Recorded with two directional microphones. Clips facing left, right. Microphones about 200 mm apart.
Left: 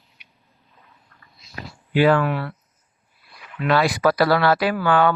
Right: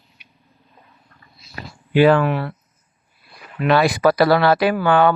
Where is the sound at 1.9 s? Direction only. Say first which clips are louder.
Right 3 dB; 25° right (ahead or behind).